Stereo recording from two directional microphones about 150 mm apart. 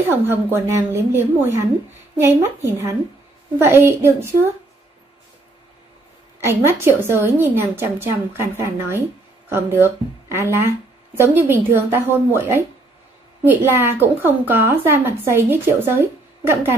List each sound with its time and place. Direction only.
0.1 s a woman's voice: 15° right (ahead or behind)
6.6 s a woman's voice: 15° right (ahead or behind)